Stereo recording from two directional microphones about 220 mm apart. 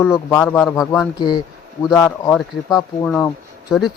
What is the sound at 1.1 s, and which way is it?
Speech, 20° left (ahead or behind).